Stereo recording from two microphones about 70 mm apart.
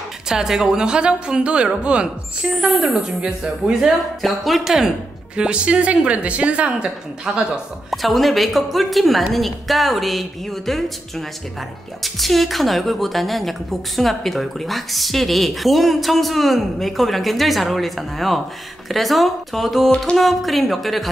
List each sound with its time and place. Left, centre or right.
0.3 s speech: centre
4.2 s speech: centre
7.9 s a woman's voice: centre